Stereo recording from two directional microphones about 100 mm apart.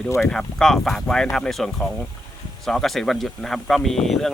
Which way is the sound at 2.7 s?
5° left (ahead or behind).